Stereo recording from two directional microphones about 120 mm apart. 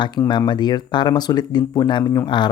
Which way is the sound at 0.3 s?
40° left (ahead or behind).